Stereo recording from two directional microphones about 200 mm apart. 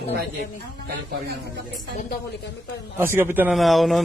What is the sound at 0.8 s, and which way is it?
Speech, 55° right (ahead or behind).